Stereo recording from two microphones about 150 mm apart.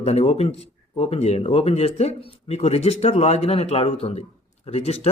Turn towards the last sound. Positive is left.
turn(degrees=45)  # may be behind; listen again after turning